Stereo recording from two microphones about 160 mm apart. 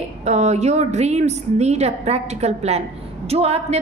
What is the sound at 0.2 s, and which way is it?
A woman's voice, 45° right (ahead or behind).